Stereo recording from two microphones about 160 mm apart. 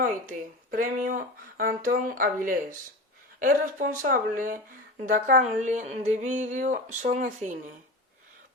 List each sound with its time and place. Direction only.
0.0 s speech: 55° right (ahead or behind)